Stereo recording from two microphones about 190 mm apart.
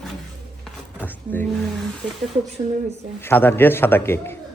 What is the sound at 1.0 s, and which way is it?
Drawer open or close, 10° left (ahead or behind).